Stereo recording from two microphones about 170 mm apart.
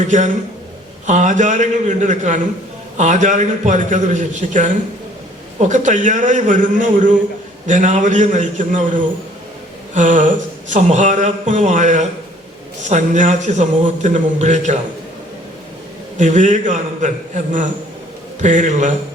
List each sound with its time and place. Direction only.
0.0 s speech: 45° right (ahead or behind)
16.1 s speech: 45° right (ahead or behind)